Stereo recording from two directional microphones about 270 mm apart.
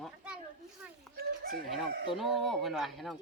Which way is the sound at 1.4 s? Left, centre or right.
Right.